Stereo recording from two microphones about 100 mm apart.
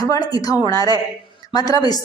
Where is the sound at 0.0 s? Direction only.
40° left (ahead or behind).